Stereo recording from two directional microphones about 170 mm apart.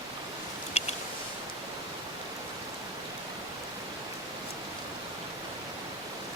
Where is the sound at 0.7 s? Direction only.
40° left (ahead or behind).